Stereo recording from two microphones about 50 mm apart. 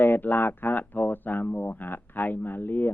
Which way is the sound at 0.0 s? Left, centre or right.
Left.